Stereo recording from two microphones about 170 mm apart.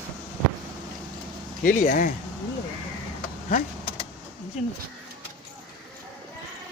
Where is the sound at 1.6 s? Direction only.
55° left (ahead or behind).